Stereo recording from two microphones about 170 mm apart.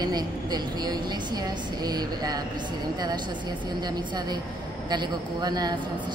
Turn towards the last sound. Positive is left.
turn(degrees=-25)  # may be behind; listen again after turning